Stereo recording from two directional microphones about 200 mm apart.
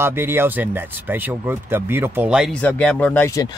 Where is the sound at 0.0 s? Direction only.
10° right (ahead or behind).